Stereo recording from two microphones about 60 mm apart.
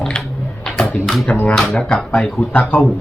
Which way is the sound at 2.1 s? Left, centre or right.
Left.